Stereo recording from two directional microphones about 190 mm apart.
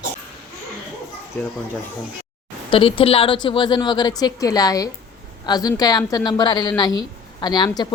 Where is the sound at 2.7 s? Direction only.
30° left (ahead or behind).